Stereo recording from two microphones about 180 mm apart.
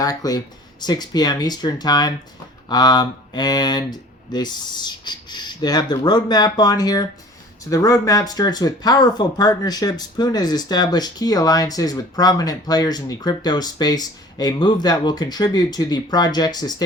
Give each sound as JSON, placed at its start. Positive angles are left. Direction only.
{"t": 0.0, "sound": "speech", "side_deg": 20}